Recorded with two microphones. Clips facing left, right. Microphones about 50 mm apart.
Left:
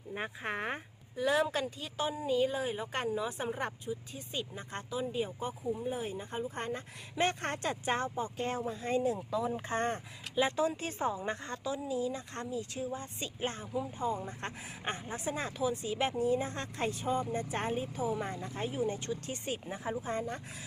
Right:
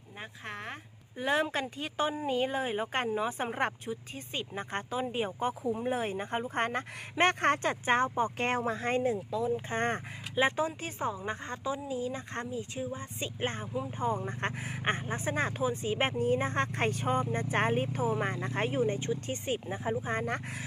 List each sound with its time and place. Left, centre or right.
0.1 s speech: centre
1.1 s speech: right
8.9 s speech: right
9.3 s speech: centre
9.7 s speech: right
11.3 s speech: right
18.9 s speech: right
20.1 s speech: right